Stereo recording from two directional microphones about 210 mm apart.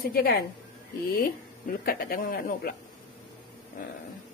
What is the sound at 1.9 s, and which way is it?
Speech, 45° left (ahead or behind).